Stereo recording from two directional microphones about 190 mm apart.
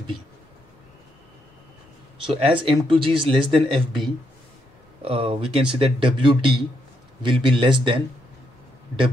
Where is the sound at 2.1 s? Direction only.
30° right (ahead or behind).